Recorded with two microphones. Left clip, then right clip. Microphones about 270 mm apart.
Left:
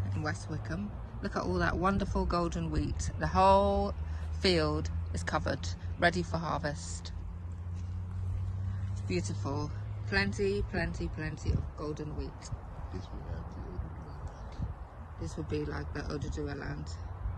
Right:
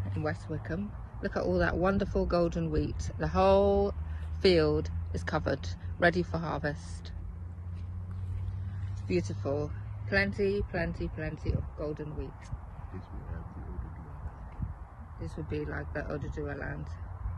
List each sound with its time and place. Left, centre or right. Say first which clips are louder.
0.1 s speech: right 3 dB; left
9.0 s speech: right 4 dB; left; by 12.5 s centre
15.2 s speech: even; centre